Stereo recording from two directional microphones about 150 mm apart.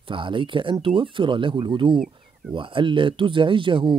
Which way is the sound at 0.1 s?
35° right (ahead or behind).